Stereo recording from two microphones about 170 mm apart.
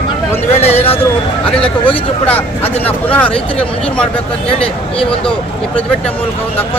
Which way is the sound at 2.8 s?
10° left (ahead or behind).